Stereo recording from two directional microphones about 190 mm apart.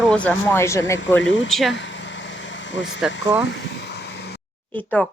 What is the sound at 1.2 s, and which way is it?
Speech, 70° left (ahead or behind).